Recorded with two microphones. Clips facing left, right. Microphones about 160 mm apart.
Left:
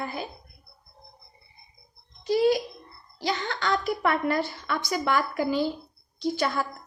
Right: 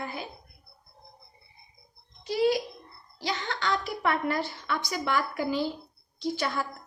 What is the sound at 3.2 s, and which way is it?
A woman's voice, 45° left (ahead or behind).